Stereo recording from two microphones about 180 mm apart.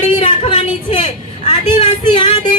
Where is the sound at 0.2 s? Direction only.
25° left (ahead or behind).